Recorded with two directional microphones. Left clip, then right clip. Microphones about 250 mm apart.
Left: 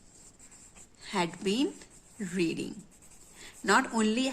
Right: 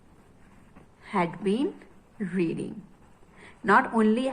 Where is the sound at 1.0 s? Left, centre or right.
Left.